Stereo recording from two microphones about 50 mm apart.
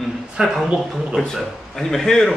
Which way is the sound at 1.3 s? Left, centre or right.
Centre.